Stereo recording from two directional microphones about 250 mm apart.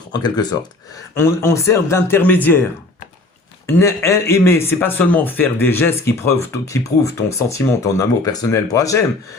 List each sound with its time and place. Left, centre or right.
0.1 s a man's voice: centre
3.7 s a man's voice: centre